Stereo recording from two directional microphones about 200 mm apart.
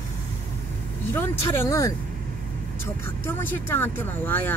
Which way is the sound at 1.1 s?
10° left (ahead or behind).